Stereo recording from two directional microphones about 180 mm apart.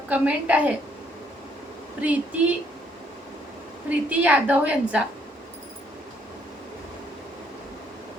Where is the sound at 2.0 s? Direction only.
10° right (ahead or behind).